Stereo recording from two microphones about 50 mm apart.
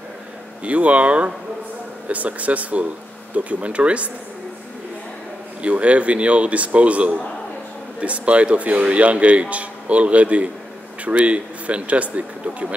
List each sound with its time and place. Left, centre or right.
0.7 s speech: right
5.6 s speech: right